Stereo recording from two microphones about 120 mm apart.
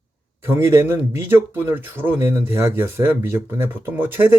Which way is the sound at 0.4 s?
20° right (ahead or behind).